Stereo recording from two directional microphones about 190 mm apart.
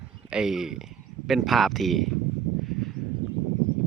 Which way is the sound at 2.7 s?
Centre (ahead or behind).